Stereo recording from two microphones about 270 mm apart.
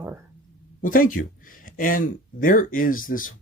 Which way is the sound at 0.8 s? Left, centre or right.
Left.